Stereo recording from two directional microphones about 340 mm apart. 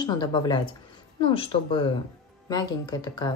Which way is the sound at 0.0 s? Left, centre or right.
Centre.